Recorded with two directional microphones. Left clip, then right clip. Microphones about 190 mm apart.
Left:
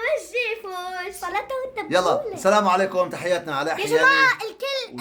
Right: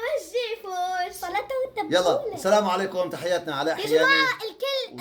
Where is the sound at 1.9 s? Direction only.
30° left (ahead or behind).